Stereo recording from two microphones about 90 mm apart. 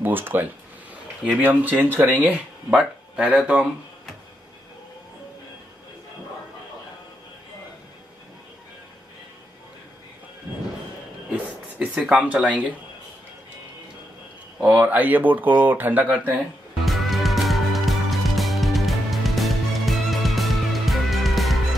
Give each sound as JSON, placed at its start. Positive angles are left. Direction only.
{"t": 0.0, "sound": "speech", "side_deg": -20}
{"t": 11.8, "sound": "speech", "side_deg": -10}
{"t": 14.6, "sound": "speech", "side_deg": -20}
{"t": 16.8, "sound": "music", "side_deg": 0}